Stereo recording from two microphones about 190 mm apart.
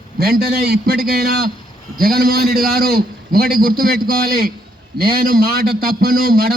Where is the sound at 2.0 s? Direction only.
55° right (ahead or behind).